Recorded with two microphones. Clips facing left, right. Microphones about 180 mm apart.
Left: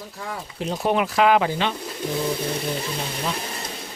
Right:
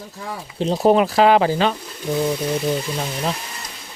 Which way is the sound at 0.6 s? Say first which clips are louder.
Right 7 dB; 35° right (ahead or behind).